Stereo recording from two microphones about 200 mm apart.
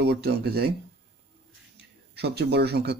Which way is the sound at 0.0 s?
55° right (ahead or behind).